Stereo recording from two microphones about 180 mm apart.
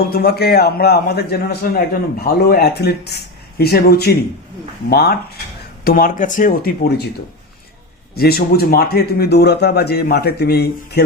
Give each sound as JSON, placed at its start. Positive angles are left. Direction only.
{"t": 0.1, "sound": "a man's voice", "side_deg": 60}
{"t": 8.1, "sound": "a man's voice", "side_deg": 60}